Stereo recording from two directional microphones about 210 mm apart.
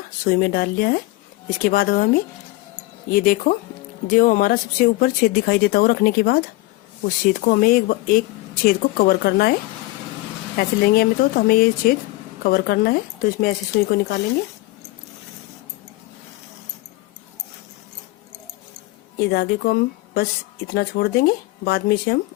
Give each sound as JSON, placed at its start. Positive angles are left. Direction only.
{"t": 0.3, "sound": "speech", "side_deg": 45}
{"t": 3.1, "sound": "speech", "side_deg": 40}
{"t": 10.6, "sound": "speech", "side_deg": 45}
{"t": 19.1, "sound": "a woman's voice", "side_deg": 50}